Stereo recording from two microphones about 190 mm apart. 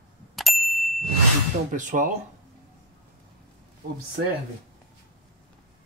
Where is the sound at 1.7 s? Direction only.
45° right (ahead or behind).